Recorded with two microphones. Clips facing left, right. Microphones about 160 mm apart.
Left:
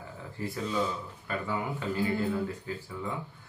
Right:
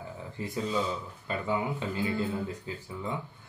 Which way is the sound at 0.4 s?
20° right (ahead or behind).